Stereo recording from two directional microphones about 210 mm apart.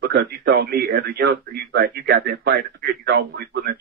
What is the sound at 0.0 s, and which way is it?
A man's voice, 50° right (ahead or behind).